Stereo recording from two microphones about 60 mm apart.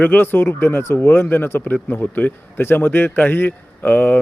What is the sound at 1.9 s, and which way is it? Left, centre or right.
Speech, left.